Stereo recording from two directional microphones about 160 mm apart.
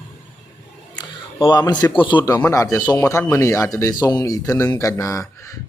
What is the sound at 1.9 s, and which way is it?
Speech, 30° left (ahead or behind).